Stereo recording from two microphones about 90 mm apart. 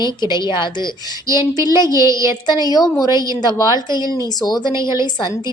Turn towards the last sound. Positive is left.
turn(degrees=50)  # may be behind; listen again after turning